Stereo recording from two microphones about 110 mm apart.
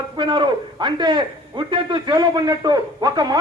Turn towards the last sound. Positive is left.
turn(degrees=-40)  # may be behind; listen again after turning